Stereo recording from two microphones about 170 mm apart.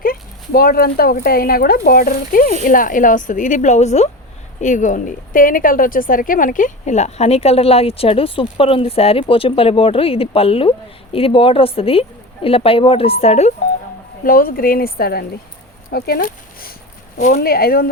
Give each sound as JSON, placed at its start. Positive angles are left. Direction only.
{"t": 0.0, "sound": "a woman's voice", "side_deg": 60}
{"t": 14.3, "sound": "speech", "side_deg": 55}